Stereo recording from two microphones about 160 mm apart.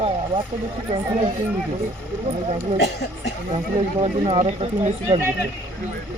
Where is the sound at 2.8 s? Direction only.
90° left.